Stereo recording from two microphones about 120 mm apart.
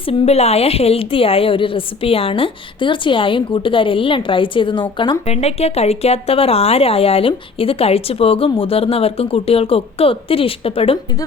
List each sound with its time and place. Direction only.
0.0 s a woman's voice: 55° left (ahead or behind); by 5.1 s 40° left (ahead or behind)
5.2 s a woman's voice: 60° left (ahead or behind)